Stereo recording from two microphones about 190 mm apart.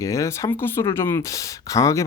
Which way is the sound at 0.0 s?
15° left (ahead or behind).